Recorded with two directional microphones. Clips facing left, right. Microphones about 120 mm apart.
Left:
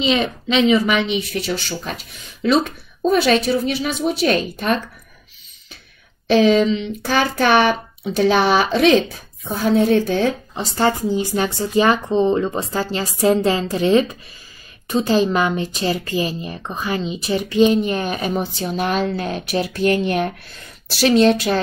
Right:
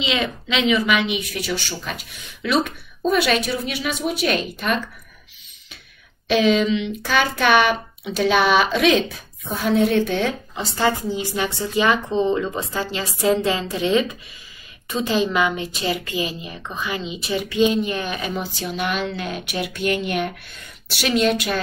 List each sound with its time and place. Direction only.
0.0 s a woman's voice: 35° left (ahead or behind)
6.3 s a woman's voice: 35° left (ahead or behind)